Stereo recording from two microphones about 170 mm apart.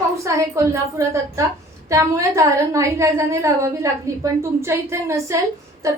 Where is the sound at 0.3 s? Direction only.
20° right (ahead or behind).